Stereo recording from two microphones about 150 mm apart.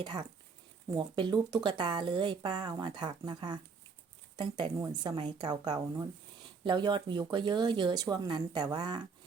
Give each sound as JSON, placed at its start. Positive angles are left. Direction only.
{"t": 0.0, "sound": "speech", "side_deg": -30}